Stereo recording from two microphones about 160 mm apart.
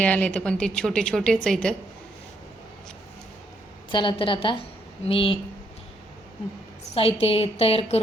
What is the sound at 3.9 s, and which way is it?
A woman's voice, 30° left (ahead or behind).